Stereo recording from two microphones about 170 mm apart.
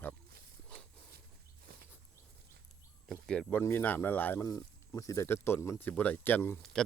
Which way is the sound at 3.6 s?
10° left (ahead or behind).